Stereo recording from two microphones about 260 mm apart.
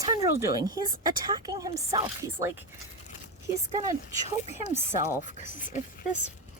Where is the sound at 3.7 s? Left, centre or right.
Centre.